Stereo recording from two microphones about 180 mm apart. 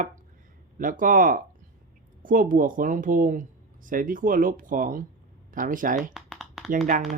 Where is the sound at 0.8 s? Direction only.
50° right (ahead or behind).